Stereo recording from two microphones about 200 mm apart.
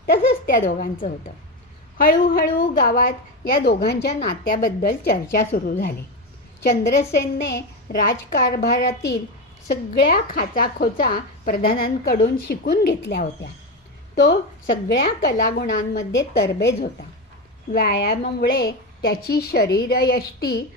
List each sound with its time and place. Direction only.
0.0 s a woman's voice: 45° left (ahead or behind)
7.1 s a woman's voice: 60° left (ahead or behind)
9.7 s a woman's voice: 50° left (ahead or behind)
14.7 s a woman's voice: 45° left (ahead or behind)
16.2 s a woman's voice: 55° left (ahead or behind)